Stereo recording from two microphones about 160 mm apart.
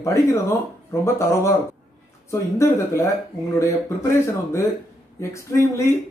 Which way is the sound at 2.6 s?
20° left (ahead or behind).